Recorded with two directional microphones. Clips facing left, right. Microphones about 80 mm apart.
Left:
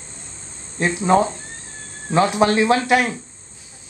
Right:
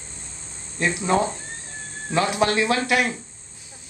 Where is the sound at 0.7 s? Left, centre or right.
Left.